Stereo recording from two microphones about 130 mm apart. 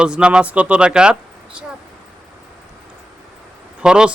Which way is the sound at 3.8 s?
5° right (ahead or behind).